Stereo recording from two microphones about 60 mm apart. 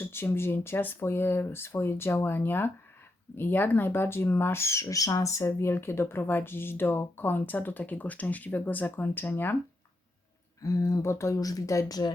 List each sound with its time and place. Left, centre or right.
0.0 s speech: left
4.9 s speech: left
10.6 s speech: left